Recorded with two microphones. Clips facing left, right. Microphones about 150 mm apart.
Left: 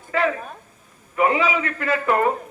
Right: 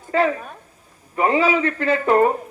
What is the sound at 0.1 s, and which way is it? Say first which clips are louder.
A man's voice: right 3 dB; 35° right (ahead or behind).